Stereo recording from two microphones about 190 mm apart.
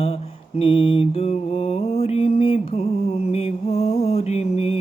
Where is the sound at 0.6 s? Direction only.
30° left (ahead or behind).